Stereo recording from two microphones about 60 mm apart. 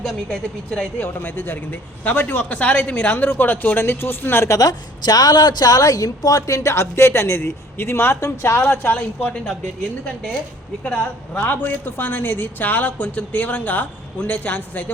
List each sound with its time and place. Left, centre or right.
0.0 s a woman's voice: centre
0.9 s a woman's voice: left
4.4 s a woman's voice: left
5.1 s speech: left
8.6 s speech: left
10.8 s a woman's voice: left